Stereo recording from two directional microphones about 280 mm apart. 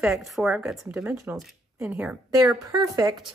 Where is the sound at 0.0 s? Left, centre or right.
Centre.